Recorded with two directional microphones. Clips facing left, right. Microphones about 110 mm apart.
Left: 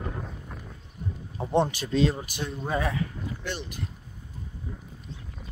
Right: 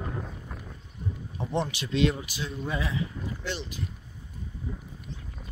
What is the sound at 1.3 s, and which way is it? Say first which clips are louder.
Speech: left 6 dB; 30° left (ahead or behind).